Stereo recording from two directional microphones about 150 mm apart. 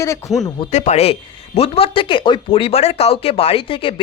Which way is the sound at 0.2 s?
20° left (ahead or behind).